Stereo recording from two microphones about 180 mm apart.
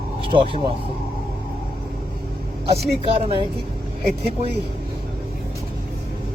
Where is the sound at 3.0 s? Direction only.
30° right (ahead or behind).